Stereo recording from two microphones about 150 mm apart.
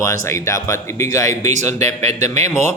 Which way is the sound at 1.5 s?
50° right (ahead or behind).